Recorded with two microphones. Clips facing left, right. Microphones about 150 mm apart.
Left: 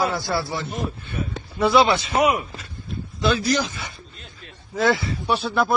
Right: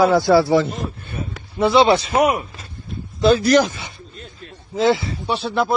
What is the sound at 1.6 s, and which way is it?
Speech, 25° right (ahead or behind).